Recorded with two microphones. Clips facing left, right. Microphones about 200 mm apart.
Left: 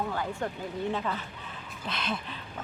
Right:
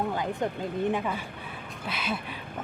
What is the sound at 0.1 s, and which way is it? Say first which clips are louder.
A woman's voice: right 3 dB; 20° right (ahead or behind).